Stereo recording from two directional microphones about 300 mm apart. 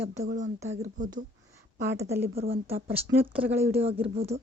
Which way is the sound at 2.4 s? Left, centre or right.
Centre.